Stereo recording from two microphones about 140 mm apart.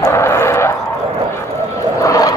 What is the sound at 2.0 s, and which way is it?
Vehicle, 25° left (ahead or behind).